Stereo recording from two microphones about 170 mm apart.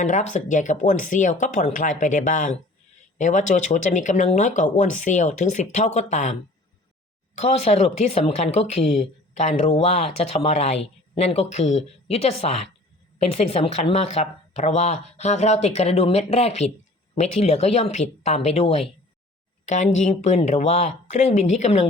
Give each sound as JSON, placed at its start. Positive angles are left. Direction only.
{"t": 0.0, "sound": "speech", "side_deg": 45}
{"t": 7.3, "sound": "speech", "side_deg": 40}